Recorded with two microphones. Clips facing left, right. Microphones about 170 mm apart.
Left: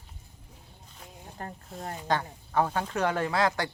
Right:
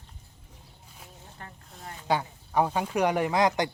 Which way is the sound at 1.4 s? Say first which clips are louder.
Left 8 dB; 40° left (ahead or behind).